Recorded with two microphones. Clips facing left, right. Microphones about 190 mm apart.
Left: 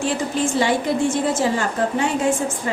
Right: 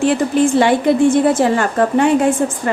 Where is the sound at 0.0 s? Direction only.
60° right (ahead or behind).